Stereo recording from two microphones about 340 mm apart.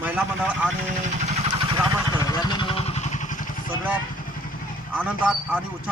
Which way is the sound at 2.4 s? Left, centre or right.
Centre.